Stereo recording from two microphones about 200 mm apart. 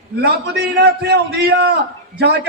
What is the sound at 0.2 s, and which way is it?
A man's voice, 55° right (ahead or behind).